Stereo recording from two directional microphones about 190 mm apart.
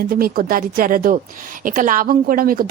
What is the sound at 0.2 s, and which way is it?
Speech, 50° right (ahead or behind).